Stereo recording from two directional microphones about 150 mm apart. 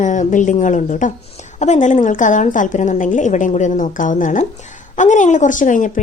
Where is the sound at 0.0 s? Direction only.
55° left (ahead or behind).